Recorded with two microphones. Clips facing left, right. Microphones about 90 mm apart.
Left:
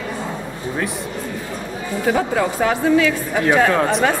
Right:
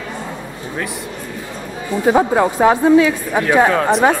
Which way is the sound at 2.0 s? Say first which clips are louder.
Right 5 dB; 25° right (ahead or behind).